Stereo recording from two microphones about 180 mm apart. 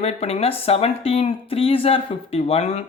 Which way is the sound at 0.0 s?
35° left (ahead or behind).